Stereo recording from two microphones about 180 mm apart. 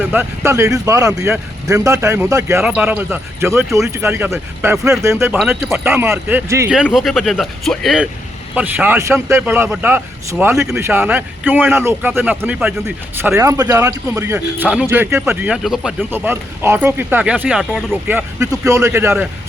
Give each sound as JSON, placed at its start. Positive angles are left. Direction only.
{"t": 0.1, "sound": "a man's voice", "side_deg": -15}
{"t": 6.9, "sound": "speech", "side_deg": 0}
{"t": 8.5, "sound": "a man's voice", "side_deg": -10}
{"t": 17.6, "sound": "speech", "side_deg": 5}
{"t": 18.1, "sound": "a man's voice", "side_deg": -15}